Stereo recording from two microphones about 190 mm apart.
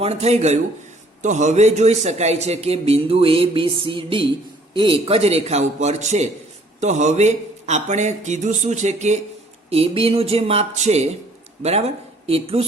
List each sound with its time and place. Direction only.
0.0 s a man's voice: 35° right (ahead or behind)